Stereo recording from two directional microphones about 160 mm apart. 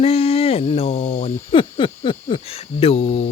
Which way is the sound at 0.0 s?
35° left (ahead or behind).